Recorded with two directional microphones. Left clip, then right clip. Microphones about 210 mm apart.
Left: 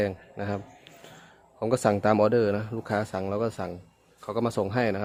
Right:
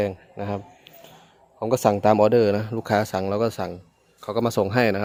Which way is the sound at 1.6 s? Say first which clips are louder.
Right 4 dB; 10° right (ahead or behind).